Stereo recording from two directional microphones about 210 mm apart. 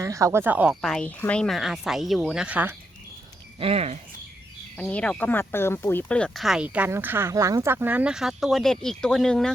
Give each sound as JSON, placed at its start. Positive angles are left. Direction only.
{"t": 0.0, "sound": "speech", "side_deg": -15}
{"t": 3.6, "sound": "speech", "side_deg": -30}
{"t": 4.8, "sound": "speech", "side_deg": 5}